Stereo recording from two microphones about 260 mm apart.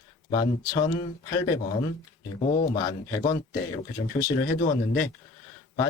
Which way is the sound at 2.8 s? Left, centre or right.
Centre.